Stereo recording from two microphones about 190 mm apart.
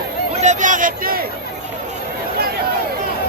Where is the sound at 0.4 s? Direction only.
40° right (ahead or behind).